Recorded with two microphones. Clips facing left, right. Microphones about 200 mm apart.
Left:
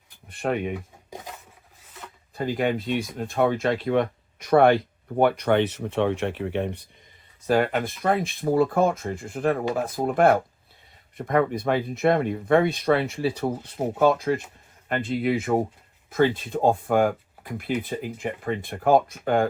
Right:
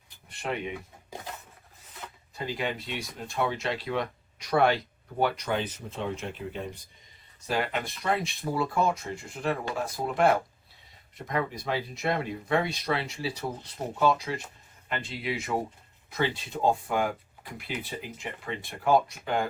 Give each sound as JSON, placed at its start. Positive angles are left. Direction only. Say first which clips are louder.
{"t": 0.3, "sound": "speech", "louder": "left 7 dB", "side_deg": 50}
{"t": 2.3, "sound": "speech", "louder": "left 8 dB", "side_deg": 50}
{"t": 7.4, "sound": "speech", "louder": "left 8 dB", "side_deg": 50}